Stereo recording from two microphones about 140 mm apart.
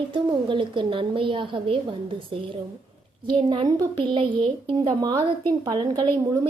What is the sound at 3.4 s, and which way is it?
A woman's voice, 35° right (ahead or behind).